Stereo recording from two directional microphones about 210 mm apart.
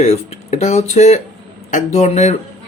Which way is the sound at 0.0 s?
30° left (ahead or behind).